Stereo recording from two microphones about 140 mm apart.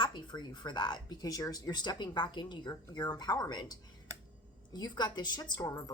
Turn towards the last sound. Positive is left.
turn(degrees=30)  # may be behind; listen again after turning